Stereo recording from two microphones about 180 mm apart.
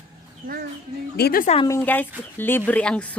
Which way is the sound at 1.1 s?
60° left (ahead or behind).